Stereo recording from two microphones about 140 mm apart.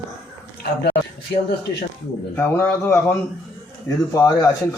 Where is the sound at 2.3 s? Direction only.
15° left (ahead or behind).